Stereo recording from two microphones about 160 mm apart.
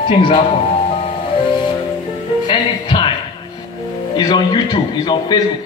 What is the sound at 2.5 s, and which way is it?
Music, 30° left (ahead or behind).